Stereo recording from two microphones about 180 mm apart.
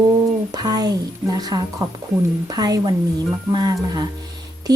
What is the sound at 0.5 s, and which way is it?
A woman's voice, 20° right (ahead or behind).